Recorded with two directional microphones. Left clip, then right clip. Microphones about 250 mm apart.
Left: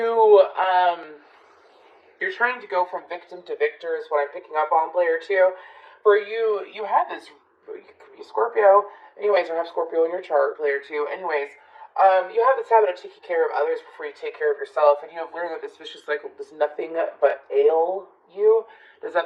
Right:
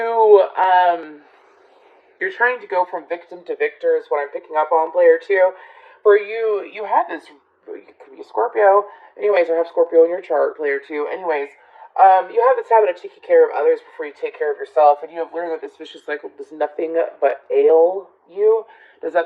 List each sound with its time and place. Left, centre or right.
0.0 s a sound: right
2.1 s speech: right
8.4 s speech: right
18.3 s speech: right